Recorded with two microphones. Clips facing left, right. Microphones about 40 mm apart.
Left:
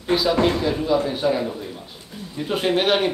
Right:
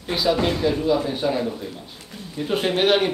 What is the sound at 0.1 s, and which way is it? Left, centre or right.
A man's voice, centre.